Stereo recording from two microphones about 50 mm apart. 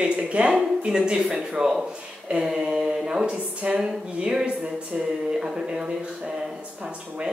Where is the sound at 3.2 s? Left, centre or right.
Right.